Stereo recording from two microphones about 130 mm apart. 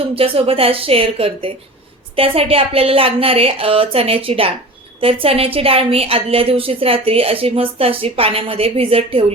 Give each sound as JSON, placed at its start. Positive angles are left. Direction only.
{"t": 0.2, "sound": "a woman's voice", "side_deg": -45}